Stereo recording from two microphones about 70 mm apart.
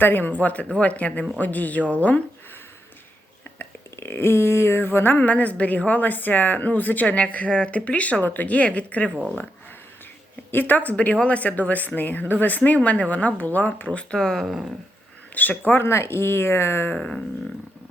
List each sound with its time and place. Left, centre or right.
0.0 s speech: left
3.6 s speech: left
9.0 s speech: centre
10.5 s speech: left; by 14.4 s centre
15.4 s speech: left
16.9 s a sound: centre